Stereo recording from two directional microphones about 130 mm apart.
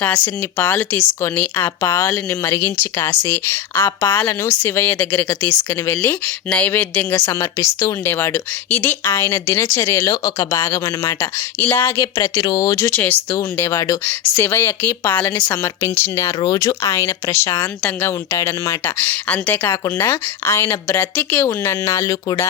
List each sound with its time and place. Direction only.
0.0 s a woman's voice: 10° left (ahead or behind)
10.0 s speech: 30° left (ahead or behind)
14.0 s a woman's voice: 15° left (ahead or behind)